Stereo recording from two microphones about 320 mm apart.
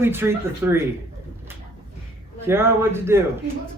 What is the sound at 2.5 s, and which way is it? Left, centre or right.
Speech, centre.